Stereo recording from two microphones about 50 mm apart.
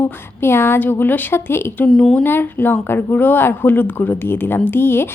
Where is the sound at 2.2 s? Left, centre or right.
Left.